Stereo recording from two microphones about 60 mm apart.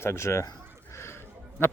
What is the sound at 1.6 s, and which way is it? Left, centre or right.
Speech, left.